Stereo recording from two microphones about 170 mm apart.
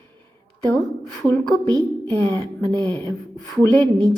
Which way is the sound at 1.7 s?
20° right (ahead or behind).